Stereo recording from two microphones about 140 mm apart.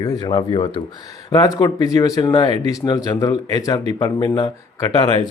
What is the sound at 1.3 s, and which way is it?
Speech, 25° left (ahead or behind).